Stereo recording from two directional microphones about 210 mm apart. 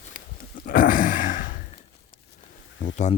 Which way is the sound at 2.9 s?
35° left (ahead or behind).